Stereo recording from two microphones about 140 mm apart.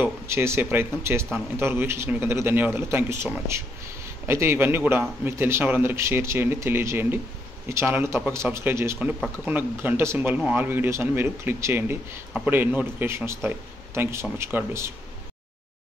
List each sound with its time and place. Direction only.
0.0 s a man's voice: 15° right (ahead or behind)